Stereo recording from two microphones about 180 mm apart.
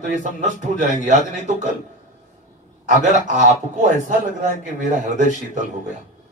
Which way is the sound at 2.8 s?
45° right (ahead or behind).